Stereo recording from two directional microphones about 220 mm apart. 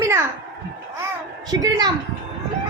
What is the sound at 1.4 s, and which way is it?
Speech, 15° right (ahead or behind).